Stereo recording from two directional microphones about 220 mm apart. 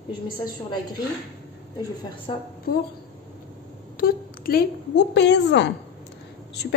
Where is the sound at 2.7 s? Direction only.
45° left (ahead or behind).